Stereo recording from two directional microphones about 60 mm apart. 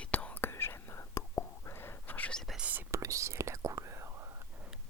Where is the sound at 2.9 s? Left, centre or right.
Right.